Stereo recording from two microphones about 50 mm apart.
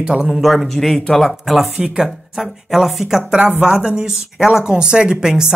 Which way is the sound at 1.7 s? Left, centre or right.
Centre.